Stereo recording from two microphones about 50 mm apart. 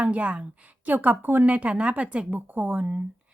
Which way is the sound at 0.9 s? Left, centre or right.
Right.